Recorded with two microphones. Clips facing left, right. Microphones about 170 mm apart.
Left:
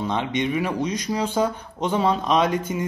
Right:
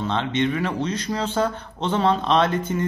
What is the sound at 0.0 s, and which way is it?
Speech, 10° left (ahead or behind).